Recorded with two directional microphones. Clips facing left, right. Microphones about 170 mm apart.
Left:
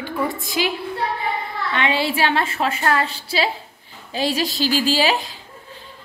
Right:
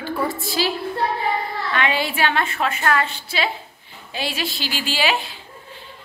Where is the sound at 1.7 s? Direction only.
25° left (ahead or behind).